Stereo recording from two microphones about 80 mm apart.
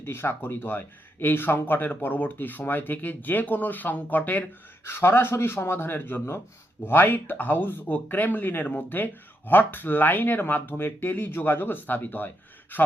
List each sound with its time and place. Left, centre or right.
0.0 s speech: left